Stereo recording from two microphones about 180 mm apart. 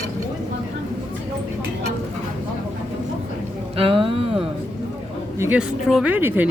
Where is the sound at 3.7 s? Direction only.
30° right (ahead or behind).